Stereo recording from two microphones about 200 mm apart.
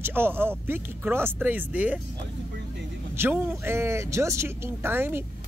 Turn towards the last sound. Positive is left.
turn(degrees=-10)  # may be behind; listen again after turning